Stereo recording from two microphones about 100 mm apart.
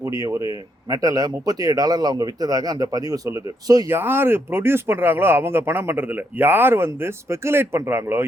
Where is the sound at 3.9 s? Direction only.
20° right (ahead or behind).